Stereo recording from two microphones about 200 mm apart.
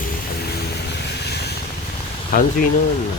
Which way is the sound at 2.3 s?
45° left (ahead or behind).